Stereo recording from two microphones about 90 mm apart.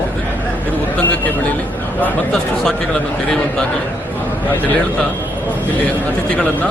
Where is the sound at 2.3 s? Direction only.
5° left (ahead or behind).